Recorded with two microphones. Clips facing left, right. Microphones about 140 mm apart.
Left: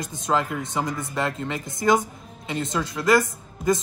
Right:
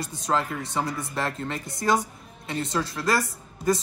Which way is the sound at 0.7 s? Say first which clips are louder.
Left 1 dB; 20° left (ahead or behind).